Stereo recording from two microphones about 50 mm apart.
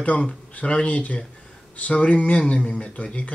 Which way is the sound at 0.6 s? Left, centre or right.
Left.